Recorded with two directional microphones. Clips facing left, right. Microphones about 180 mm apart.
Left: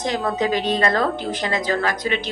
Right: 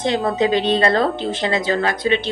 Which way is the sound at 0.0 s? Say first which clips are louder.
Right 4 dB; 25° right (ahead or behind).